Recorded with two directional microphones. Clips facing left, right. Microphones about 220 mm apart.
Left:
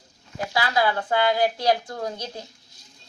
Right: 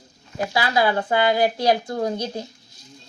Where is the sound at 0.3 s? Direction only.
10° right (ahead or behind).